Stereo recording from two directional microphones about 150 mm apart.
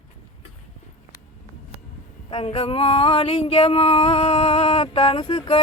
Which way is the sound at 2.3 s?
35° left (ahead or behind).